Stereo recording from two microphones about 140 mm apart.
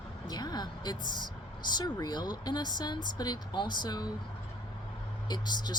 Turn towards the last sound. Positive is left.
turn(degrees=30)  # may be behind; listen again after turning